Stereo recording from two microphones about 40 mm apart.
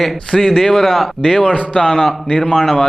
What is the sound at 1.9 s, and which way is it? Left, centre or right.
Speech, centre.